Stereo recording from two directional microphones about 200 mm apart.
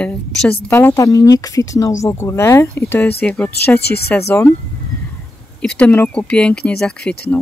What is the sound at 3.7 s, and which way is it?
Speech, 55° left (ahead or behind).